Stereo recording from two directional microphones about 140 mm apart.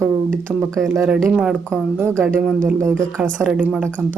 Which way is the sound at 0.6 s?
20° right (ahead or behind).